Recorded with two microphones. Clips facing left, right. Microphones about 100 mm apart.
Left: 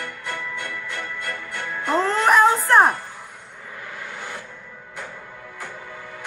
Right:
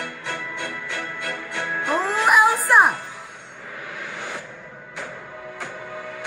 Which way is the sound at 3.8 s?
65° right (ahead or behind).